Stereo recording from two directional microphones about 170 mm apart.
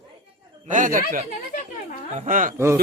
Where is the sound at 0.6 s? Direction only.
50° right (ahead or behind).